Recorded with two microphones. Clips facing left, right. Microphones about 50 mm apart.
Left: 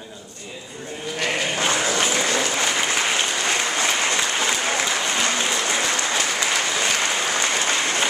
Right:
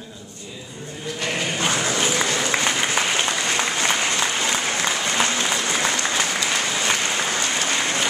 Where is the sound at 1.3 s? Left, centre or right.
Centre.